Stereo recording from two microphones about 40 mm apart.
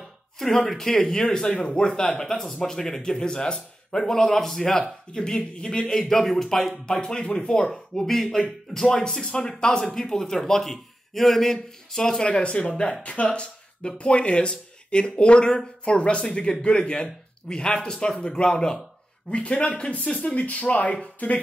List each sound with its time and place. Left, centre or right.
0.7 s a man's voice: centre
5.1 s a man's voice: centre
9.2 s a man's voice: left